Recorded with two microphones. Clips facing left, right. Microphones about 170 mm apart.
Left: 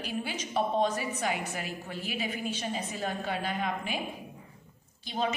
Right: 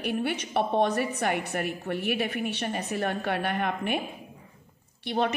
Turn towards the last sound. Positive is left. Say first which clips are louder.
# right 5 dB
turn(degrees=-65)  # may be behind; listen again after turning